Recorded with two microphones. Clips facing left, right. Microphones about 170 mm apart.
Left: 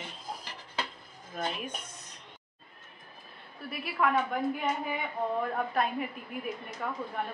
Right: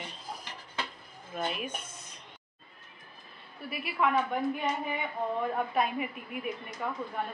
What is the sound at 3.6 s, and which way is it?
Clang, centre (ahead or behind).